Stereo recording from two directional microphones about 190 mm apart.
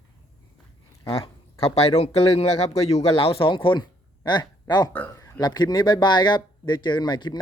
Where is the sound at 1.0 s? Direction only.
30° left (ahead or behind).